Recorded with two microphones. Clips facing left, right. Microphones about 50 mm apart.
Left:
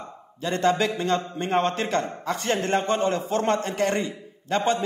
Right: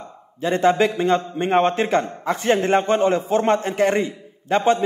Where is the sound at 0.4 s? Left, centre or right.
Right.